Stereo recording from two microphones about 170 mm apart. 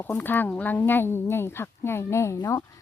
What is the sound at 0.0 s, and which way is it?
Speech, 10° left (ahead or behind).